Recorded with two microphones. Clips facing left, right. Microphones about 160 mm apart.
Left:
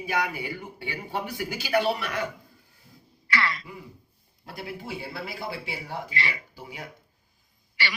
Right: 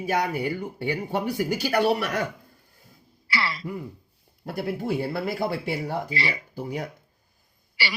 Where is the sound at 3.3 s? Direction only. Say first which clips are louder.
Left 1 dB; 35° right (ahead or behind).